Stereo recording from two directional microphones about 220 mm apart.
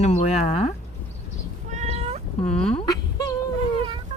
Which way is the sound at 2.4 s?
30° left (ahead or behind).